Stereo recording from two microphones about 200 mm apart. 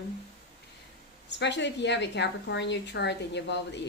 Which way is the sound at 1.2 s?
60° left (ahead or behind).